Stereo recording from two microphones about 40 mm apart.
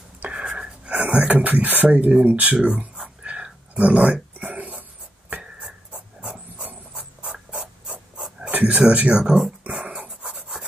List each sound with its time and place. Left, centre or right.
0.3 s writing: right
1.0 s speech: right
1.9 s speech: right
3.3 s a sound: right
3.7 s a sound: right
7.3 s mechanisms: right
8.5 s a sound: right
8.7 s speech: right
9.2 s speech: centre
9.8 s dog: right